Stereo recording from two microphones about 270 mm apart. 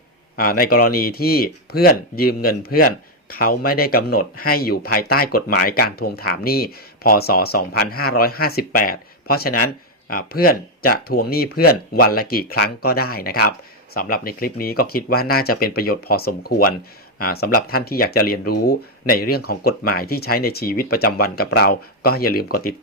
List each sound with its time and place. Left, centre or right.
0.3 s speech: left